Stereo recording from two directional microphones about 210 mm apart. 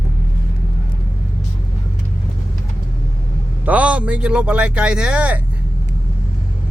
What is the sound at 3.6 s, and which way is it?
A man's voice, 5° right (ahead or behind).